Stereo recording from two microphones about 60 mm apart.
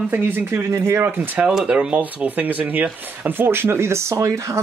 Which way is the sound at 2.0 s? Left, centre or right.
Right.